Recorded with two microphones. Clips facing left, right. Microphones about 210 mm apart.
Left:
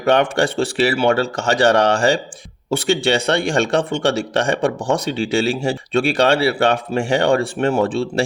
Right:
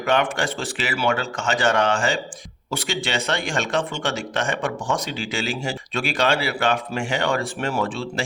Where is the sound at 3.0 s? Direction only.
35° left (ahead or behind).